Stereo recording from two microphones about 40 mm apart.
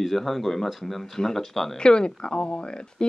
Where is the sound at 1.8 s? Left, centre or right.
Left.